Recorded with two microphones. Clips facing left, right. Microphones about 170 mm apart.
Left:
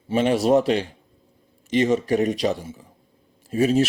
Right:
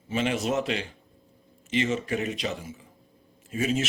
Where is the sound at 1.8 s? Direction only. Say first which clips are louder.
Left 8 dB; 40° left (ahead or behind).